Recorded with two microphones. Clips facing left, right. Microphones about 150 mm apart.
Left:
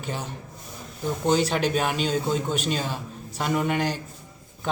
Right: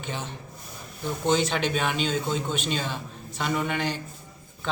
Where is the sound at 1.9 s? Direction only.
40° left (ahead or behind).